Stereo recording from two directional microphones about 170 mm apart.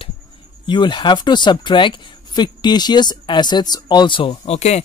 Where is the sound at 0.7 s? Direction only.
25° left (ahead or behind).